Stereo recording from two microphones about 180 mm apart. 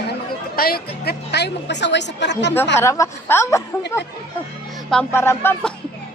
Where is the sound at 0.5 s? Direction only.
55° left (ahead or behind); by 2.5 s 75° left (ahead or behind).